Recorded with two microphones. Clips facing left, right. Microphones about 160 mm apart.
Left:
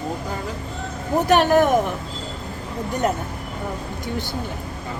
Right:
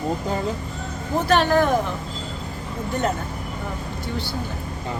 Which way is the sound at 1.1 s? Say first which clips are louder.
Left 2 dB; 15° left (ahead or behind).